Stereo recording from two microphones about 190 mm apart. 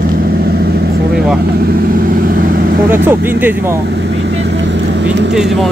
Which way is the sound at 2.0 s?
50° right (ahead or behind).